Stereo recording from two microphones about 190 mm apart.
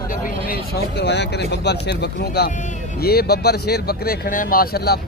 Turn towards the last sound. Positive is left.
turn(degrees=55)  # may be behind; listen again after turning